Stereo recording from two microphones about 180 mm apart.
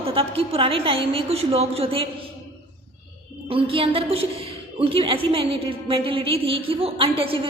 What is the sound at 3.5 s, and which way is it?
A woman's voice, 30° right (ahead or behind).